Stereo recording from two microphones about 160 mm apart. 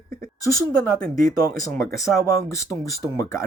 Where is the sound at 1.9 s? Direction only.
20° left (ahead or behind).